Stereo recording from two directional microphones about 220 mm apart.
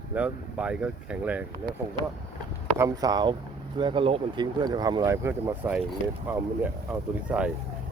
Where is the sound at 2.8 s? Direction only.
15° right (ahead or behind).